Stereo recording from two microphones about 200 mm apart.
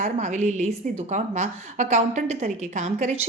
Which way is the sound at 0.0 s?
35° right (ahead or behind).